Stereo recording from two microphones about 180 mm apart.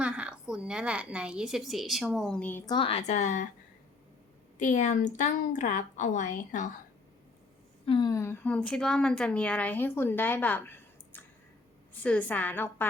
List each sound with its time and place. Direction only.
0.0 s a woman's voice: 5° right (ahead or behind)
2.6 s a woman's voice: 30° left (ahead or behind)
4.5 s a woman's voice: 40° left (ahead or behind)
7.9 s a woman's voice: 25° left (ahead or behind)